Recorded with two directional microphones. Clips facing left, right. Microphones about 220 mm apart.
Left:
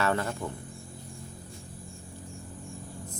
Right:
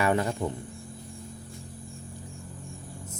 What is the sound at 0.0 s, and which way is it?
Speech, 15° right (ahead or behind).